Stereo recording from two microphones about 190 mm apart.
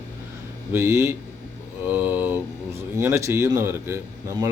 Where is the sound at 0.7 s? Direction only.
15° right (ahead or behind).